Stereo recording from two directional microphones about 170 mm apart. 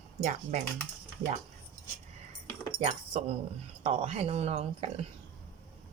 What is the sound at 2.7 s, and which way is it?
Speech, 40° right (ahead or behind).